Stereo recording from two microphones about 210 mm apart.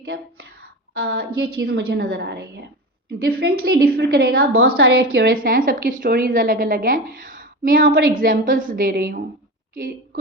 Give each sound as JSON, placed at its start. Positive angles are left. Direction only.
{"t": 0.1, "sound": "a woman's voice", "side_deg": -45}